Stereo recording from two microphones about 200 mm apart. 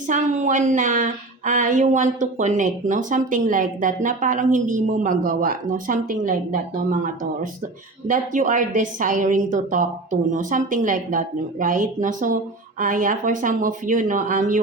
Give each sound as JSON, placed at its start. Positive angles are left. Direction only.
{"t": 0.1, "sound": "speech", "side_deg": -40}